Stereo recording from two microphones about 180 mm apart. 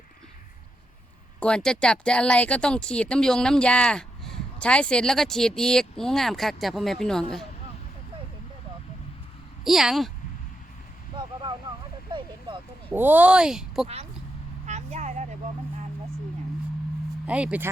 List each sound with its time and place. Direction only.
1.4 s speech: 5° left (ahead or behind)
9.6 s speech: centre (ahead or behind)
12.9 s speech: 10° right (ahead or behind)
13.8 s speech: 35° right (ahead or behind)
14.7 s vehicle: 40° right (ahead or behind)
17.2 s speech: 5° right (ahead or behind)